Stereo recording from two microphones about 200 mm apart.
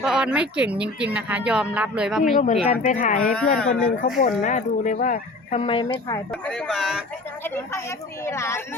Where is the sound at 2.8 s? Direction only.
40° left (ahead or behind).